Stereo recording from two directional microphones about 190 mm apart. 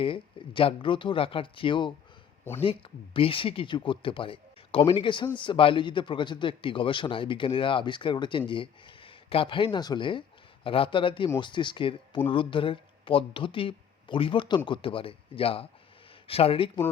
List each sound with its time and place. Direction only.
0.0 s a man's voice: 30° left (ahead or behind)